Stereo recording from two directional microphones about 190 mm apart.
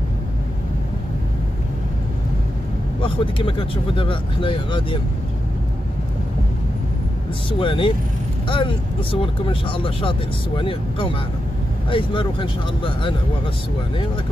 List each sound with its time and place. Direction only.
3.0 s speech: 25° left (ahead or behind)
7.5 s speech: 25° left (ahead or behind)